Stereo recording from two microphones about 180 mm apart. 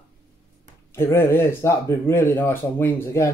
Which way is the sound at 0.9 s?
15° left (ahead or behind).